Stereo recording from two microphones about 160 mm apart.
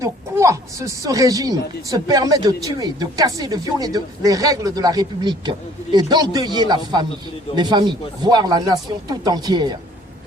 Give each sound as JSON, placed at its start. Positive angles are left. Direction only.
{"t": 0.0, "sound": "speech", "side_deg": -20}